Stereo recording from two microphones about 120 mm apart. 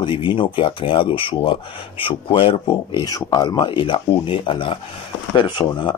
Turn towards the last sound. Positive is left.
turn(degrees=45)  # may be behind; listen again after turning